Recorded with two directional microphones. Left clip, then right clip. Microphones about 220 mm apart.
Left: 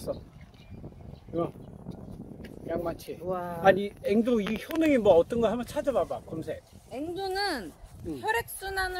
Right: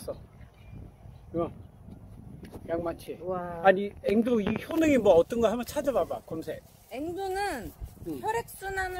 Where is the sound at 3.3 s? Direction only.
10° left (ahead or behind).